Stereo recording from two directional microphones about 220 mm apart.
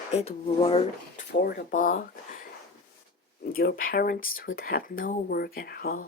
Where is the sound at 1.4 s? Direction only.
40° left (ahead or behind).